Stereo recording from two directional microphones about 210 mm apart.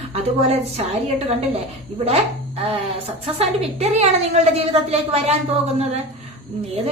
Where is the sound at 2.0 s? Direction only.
30° right (ahead or behind).